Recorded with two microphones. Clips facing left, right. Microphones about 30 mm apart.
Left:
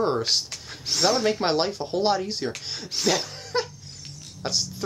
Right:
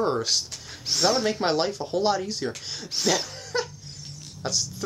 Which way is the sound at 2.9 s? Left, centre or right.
Centre.